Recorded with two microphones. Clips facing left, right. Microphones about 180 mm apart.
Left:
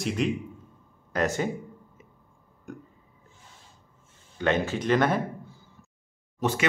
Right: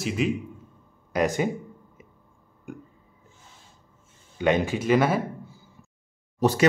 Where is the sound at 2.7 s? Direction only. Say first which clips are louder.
Right 2 dB; 10° right (ahead or behind).